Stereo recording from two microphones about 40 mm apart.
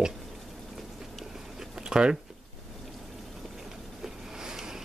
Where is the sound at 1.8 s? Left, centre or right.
Right.